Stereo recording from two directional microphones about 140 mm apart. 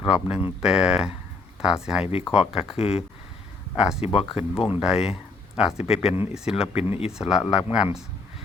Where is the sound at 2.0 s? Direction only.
45° left (ahead or behind).